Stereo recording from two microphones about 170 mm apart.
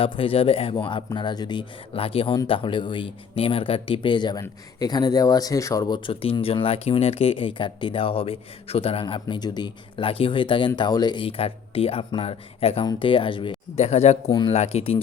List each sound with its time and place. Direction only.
0.0 s speech: 30° left (ahead or behind)
14.3 s speech: 25° left (ahead or behind)